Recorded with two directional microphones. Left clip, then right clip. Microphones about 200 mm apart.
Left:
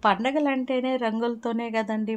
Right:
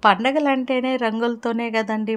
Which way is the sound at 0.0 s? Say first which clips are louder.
Right 6 dB; 25° right (ahead or behind).